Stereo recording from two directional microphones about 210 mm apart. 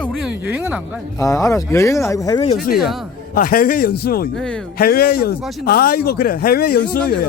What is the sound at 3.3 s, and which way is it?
Speech, 40° left (ahead or behind).